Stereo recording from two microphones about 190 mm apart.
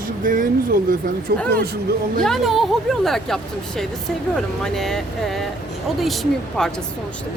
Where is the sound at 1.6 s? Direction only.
55° right (ahead or behind).